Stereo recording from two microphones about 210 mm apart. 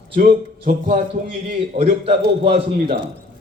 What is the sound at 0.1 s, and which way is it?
A man's voice, 40° right (ahead or behind).